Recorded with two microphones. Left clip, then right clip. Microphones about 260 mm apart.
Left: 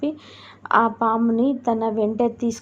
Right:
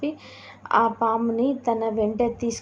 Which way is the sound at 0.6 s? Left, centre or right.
Left.